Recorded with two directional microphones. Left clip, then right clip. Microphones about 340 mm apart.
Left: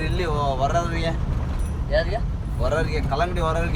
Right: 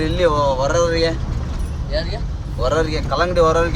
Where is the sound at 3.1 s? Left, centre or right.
Right.